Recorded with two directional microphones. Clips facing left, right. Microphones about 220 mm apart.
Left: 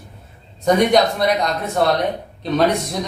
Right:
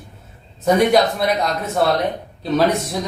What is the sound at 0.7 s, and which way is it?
A man's voice, centre (ahead or behind).